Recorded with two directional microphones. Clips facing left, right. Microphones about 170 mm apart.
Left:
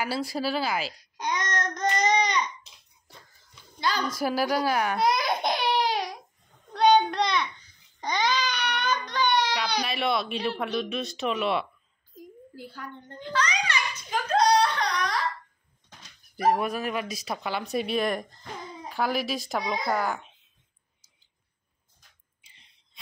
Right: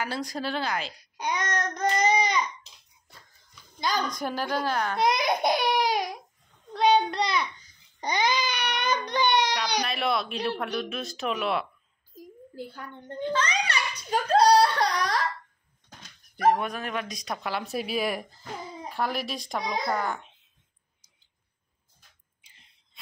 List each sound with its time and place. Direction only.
0.0 s speech: 5° left (ahead or behind)
1.1 s child singing: 10° right (ahead or behind)
4.1 s a child's voice: 5° left (ahead or behind)
5.0 s a sound: 15° right (ahead or behind)
6.7 s child singing: centre (ahead or behind)
8.0 s baby cry: 15° right (ahead or behind)
9.8 s speech: centre (ahead or behind)
12.7 s a sound: 20° right (ahead or behind)
16.4 s speech: 5° left (ahead or behind)